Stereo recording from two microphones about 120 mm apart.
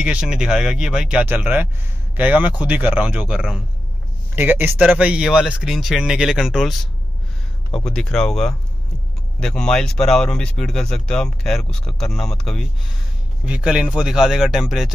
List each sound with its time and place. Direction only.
0.0 s speech: 10° right (ahead or behind)
4.4 s speech: 15° right (ahead or behind)
7.8 s speech: 5° left (ahead or behind)
13.5 s speech: 5° right (ahead or behind)